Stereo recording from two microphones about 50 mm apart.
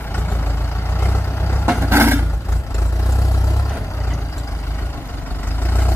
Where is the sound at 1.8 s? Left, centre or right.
Right.